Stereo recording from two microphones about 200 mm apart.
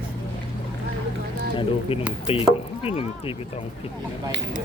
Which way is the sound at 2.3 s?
30° left (ahead or behind).